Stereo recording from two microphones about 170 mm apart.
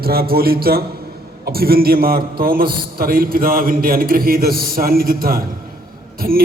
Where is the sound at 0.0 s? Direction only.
60° right (ahead or behind).